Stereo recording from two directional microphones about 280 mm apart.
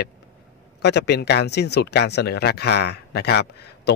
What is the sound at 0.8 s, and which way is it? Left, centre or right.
A man's voice, left.